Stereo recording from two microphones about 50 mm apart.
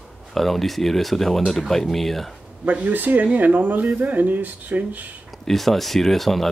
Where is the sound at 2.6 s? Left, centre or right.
Right.